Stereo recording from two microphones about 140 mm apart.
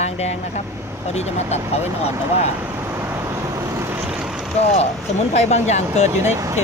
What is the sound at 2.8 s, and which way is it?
Vehicle, 15° right (ahead or behind).